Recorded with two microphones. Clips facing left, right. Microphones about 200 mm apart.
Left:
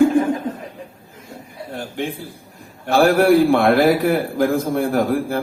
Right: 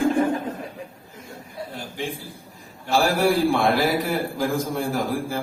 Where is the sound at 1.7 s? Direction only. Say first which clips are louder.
Left 7 dB; 60° left (ahead or behind).